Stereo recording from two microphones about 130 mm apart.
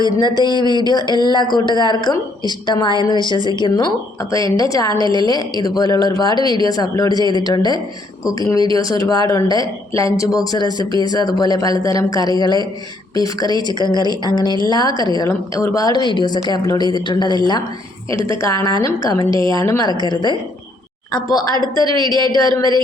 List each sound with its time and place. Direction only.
0.4 s speech: 35° left (ahead or behind)
18.3 s speech: 25° left (ahead or behind)
21.9 s speech: 35° right (ahead or behind)
22.4 s speech: 30° left (ahead or behind)